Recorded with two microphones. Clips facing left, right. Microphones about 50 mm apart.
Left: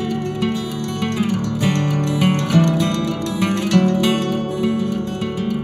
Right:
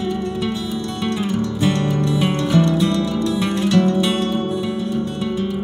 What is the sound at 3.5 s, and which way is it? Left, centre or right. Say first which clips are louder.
Music: left 1 dB; left.